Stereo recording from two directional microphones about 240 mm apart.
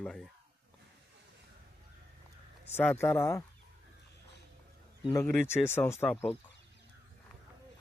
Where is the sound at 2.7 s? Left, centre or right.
Centre.